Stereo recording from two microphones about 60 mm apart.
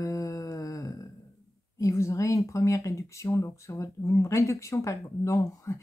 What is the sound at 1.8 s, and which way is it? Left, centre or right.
Speech, left.